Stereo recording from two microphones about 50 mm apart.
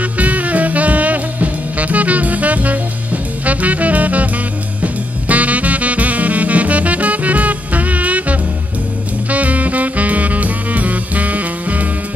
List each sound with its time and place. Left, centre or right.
0.0 s music: right